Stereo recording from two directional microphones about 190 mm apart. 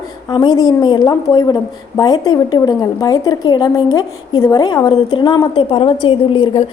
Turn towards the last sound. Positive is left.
turn(degrees=25)  # may be behind; listen again after turning